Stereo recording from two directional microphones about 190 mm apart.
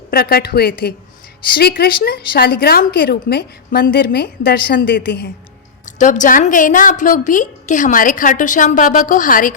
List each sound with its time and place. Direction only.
0.1 s speech: 55° left (ahead or behind)
5.8 s a woman's voice: 40° left (ahead or behind)